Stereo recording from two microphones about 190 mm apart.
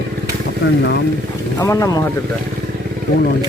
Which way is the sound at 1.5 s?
15° left (ahead or behind).